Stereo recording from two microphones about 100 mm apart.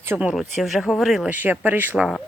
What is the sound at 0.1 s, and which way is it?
Speech, 15° right (ahead or behind).